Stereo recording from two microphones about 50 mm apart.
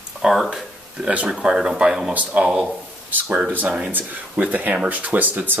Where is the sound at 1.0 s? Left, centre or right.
Right.